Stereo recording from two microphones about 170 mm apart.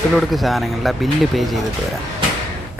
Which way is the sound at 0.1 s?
Centre (ahead or behind).